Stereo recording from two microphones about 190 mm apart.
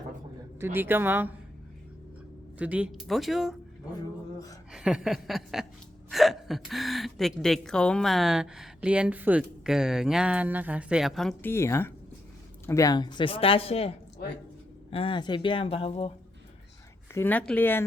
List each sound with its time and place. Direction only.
0.6 s speech: 10° right (ahead or behind)
2.6 s speech: 5° right (ahead or behind)
4.7 s speech: 5° right (ahead or behind)
11.5 s speech: 15° left (ahead or behind); by 16.1 s 30° left (ahead or behind)
17.2 s speech: 10° left (ahead or behind)